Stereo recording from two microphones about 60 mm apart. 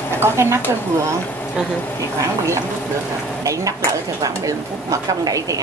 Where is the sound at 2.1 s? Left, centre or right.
Right.